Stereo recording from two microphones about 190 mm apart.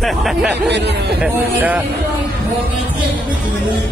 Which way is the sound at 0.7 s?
65° right (ahead or behind).